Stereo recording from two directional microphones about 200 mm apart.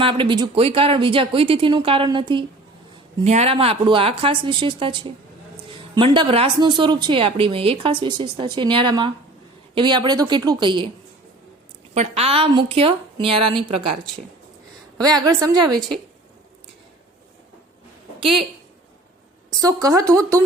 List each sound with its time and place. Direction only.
0.0 s a woman's voice: 25° right (ahead or behind)
11.9 s a woman's voice: 30° right (ahead or behind)
19.6 s speech: 15° right (ahead or behind)